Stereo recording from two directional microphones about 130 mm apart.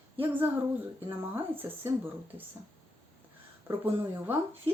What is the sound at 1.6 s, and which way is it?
Speech, 15° right (ahead or behind).